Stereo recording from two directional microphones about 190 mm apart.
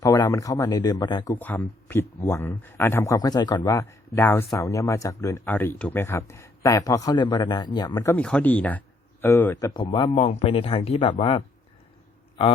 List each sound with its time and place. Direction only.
0.0 s speech: 20° left (ahead or behind)
8.1 s speech: 5° left (ahead or behind); by 12.5 s 30° left (ahead or behind)